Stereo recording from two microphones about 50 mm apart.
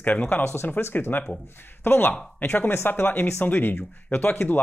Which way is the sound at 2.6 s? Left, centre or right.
Left.